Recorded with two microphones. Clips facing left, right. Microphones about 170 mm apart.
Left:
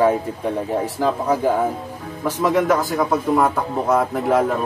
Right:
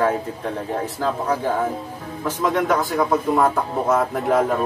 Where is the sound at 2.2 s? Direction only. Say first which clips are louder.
Left 3 dB; 5° left (ahead or behind).